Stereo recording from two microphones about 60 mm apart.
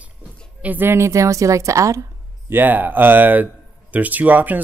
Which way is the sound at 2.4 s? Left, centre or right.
Right.